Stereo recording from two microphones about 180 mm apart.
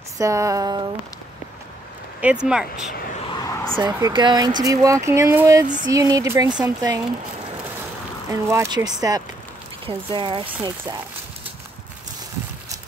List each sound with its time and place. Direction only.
0.2 s speech: 15° right (ahead or behind)
2.1 s speech: 5° right (ahead or behind)
3.3 s a sound: 20° left (ahead or behind)
4.1 s speech: 25° right (ahead or behind)
8.3 s speech: 15° right (ahead or behind)